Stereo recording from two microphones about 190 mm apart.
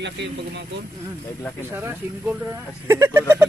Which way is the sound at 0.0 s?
65° right (ahead or behind).